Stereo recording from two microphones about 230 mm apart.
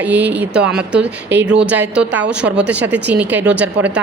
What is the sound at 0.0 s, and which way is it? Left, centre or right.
Speech, centre.